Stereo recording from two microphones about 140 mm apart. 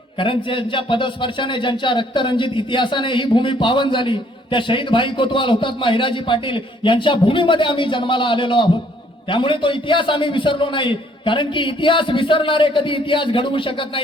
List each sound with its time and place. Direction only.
0.2 s speech: 35° left (ahead or behind)